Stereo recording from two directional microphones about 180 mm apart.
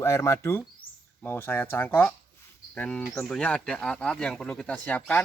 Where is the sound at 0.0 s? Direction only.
15° left (ahead or behind).